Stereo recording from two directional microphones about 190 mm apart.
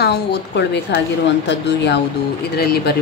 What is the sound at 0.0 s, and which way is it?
A woman's voice, 60° left (ahead or behind).